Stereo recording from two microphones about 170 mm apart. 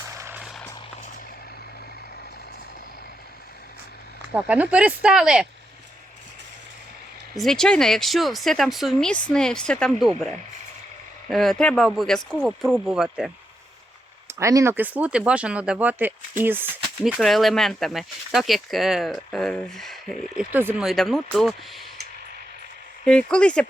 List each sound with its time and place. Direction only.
0.0 s vehicle: 15° right (ahead or behind)
4.4 s speech: 10° right (ahead or behind)
7.3 s speech: 5° left (ahead or behind)
11.3 s speech: centre (ahead or behind)
14.3 s speech: 15° right (ahead or behind)
17.0 s speech: centre (ahead or behind)
20.8 s speech: centre (ahead or behind)
23.0 s speech: 5° left (ahead or behind)